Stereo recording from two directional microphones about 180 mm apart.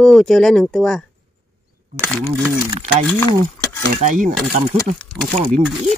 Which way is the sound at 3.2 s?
10° left (ahead or behind).